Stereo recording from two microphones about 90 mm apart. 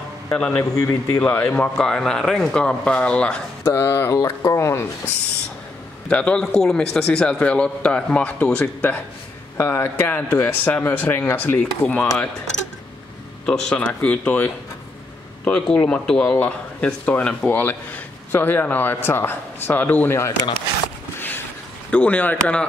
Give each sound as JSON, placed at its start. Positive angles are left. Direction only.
{"t": 0.3, "sound": "speech", "side_deg": 15}
{"t": 0.7, "sound": "speech", "side_deg": 35}
{"t": 1.2, "sound": "speech", "side_deg": 15}
{"t": 3.6, "sound": "speech", "side_deg": 35}
{"t": 6.0, "sound": "speech", "side_deg": 10}
{"t": 13.5, "sound": "speech", "side_deg": 10}
{"t": 17.5, "sound": "speech", "side_deg": 25}
{"t": 21.2, "sound": "a sound", "side_deg": 20}
{"t": 21.9, "sound": "speech", "side_deg": 15}